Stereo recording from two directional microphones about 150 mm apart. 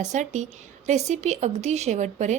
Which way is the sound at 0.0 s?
50° right (ahead or behind).